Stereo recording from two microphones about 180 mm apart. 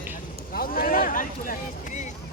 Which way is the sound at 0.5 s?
55° left (ahead or behind).